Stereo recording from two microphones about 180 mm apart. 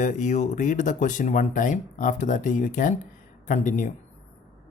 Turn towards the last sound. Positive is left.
turn(degrees=45)  # may be behind; listen again after turning